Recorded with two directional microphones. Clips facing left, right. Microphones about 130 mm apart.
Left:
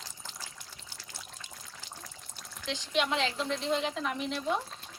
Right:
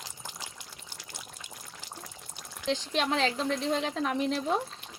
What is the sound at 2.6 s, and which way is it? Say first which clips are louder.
Speech: right 2 dB; 40° right (ahead or behind).